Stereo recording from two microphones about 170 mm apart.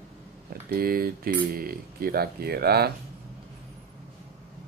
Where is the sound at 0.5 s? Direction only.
60° right (ahead or behind).